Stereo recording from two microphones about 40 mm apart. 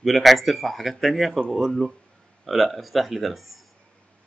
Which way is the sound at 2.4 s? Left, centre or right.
Centre.